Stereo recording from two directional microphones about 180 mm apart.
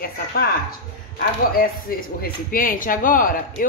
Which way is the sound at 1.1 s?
55° left (ahead or behind).